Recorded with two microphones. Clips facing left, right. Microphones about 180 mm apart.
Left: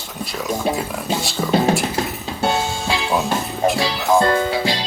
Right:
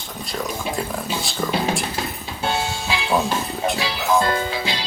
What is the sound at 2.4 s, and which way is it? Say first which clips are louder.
Music: left 4 dB; 45° left (ahead or behind).